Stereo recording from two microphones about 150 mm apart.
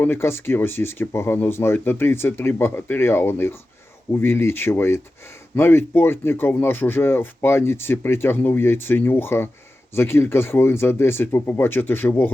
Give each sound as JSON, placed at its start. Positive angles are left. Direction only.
{"t": 0.0, "sound": "speech", "side_deg": 15}